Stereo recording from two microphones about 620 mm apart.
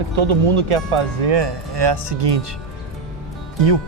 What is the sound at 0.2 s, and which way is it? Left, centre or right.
Speech, right.